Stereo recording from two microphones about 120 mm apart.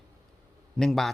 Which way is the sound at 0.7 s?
5° left (ahead or behind).